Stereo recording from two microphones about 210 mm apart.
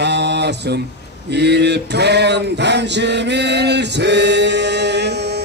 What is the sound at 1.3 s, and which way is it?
Male singing, 55° right (ahead or behind).